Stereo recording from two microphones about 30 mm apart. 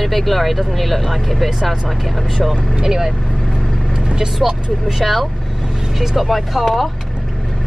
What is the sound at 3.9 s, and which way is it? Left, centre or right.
Speech, right.